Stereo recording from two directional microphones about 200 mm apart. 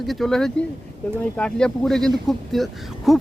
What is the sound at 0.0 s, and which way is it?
Speech, centre (ahead or behind).